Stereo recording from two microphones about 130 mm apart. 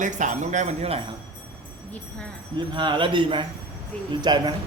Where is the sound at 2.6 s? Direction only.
35° right (ahead or behind).